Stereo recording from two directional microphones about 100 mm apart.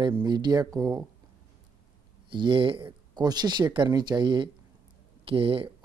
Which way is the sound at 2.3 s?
55° right (ahead or behind).